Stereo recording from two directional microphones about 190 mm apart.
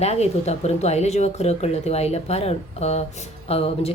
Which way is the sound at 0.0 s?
35° left (ahead or behind).